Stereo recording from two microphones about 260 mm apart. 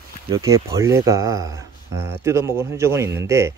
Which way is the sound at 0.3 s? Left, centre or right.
Centre.